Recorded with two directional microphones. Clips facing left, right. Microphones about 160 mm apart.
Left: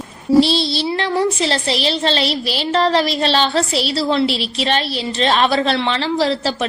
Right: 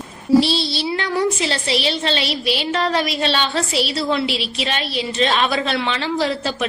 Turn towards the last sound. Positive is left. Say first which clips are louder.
# left 3 dB
turn(degrees=35)  # may be behind; listen again after turning